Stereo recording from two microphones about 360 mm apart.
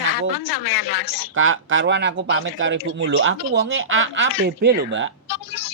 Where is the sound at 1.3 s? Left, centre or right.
Right.